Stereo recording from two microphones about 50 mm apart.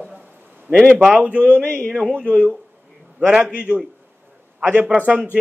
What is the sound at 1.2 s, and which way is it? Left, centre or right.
Speech, right.